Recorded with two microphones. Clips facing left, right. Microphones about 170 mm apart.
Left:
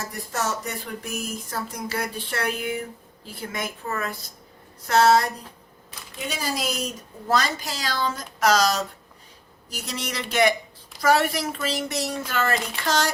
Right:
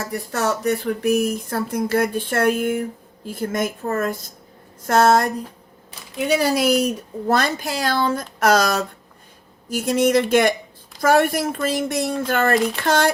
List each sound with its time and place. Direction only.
0.0 s speech: 65° right (ahead or behind)
6.1 s speech: 65° right (ahead or behind)